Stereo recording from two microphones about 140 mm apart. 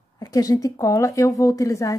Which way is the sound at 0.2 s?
25° left (ahead or behind).